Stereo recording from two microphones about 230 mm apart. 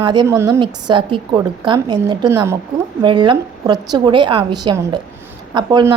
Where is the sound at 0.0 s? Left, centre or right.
Centre.